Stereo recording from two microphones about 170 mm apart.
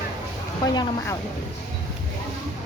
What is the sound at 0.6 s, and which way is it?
Speech, 25° left (ahead or behind).